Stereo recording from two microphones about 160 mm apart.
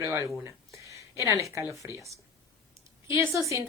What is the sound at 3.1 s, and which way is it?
Speech, 20° right (ahead or behind).